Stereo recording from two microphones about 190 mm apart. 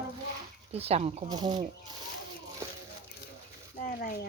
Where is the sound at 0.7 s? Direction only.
30° right (ahead or behind).